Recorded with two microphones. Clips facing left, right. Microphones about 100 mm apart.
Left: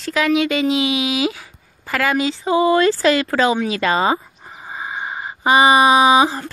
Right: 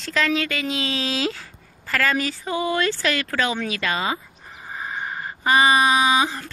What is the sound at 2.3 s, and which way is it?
Speech, 25° left (ahead or behind).